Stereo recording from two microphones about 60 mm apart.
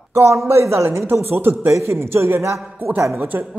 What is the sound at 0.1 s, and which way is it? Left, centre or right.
Speech, right.